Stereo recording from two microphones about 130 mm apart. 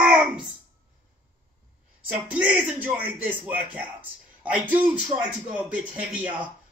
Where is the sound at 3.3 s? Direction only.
15° right (ahead or behind).